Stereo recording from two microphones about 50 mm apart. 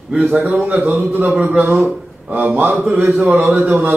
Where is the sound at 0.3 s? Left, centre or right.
Right.